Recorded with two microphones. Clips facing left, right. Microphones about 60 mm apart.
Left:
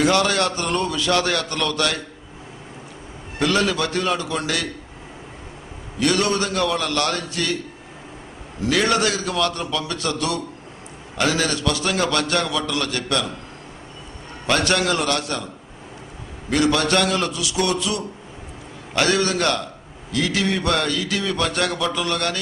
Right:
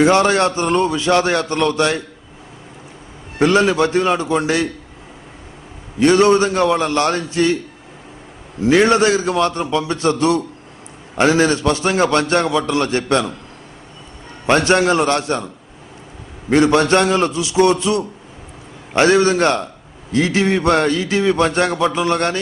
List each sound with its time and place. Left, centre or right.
0.0 s a man's voice: right
3.3 s a man's voice: right
5.9 s a man's voice: right
8.6 s a man's voice: right
14.4 s a man's voice: right
16.4 s a man's voice: right